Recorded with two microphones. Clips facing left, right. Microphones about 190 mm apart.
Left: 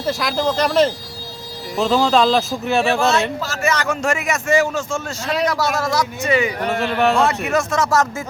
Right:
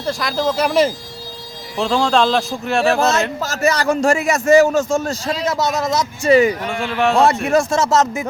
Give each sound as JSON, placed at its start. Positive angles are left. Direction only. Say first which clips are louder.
{"t": 0.0, "sound": "a man's voice", "louder": "even", "side_deg": 0}
{"t": 1.8, "sound": "a man's voice", "louder": "left 1 dB", "side_deg": 5}
{"t": 2.8, "sound": "a man's voice", "louder": "right 5 dB", "side_deg": -40}
{"t": 5.5, "sound": "speech", "louder": "right 1 dB", "side_deg": -20}
{"t": 6.2, "sound": "a man's voice", "louder": "right 8 dB", "side_deg": -35}
{"t": 6.7, "sound": "a man's voice", "louder": "left 1 dB", "side_deg": 0}
{"t": 7.2, "sound": "speech", "louder": "right 4 dB", "side_deg": -35}